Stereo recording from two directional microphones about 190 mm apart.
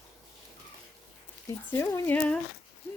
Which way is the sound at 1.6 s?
10° left (ahead or behind).